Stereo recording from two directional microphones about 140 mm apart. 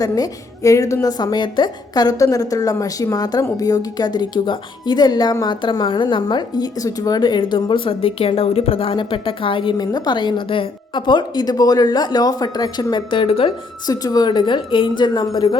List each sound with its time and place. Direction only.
0.0 s a woman's voice: 25° left (ahead or behind); by 13.5 s 45° left (ahead or behind)
13.8 s a woman's voice: 25° left (ahead or behind)